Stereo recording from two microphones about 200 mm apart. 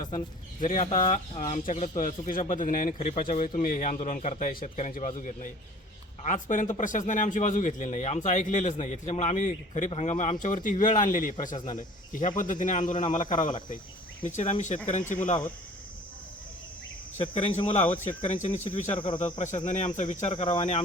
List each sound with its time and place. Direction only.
0.6 s a man's voice: 40° left (ahead or behind)
0.9 s a man's voice: 25° left (ahead or behind); by 11.5 s 40° left (ahead or behind)
11.5 s speech: 20° left (ahead or behind)
11.8 s cricket: 40° left (ahead or behind)
12.4 s a man's voice: 40° left (ahead or behind)
17.2 s a man's voice: 30° left (ahead or behind)
19.2 s a man's voice: 35° left (ahead or behind)